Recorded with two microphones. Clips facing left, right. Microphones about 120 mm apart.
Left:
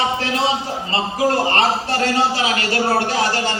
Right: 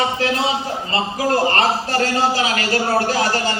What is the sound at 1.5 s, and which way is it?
A man's voice, 40° right (ahead or behind).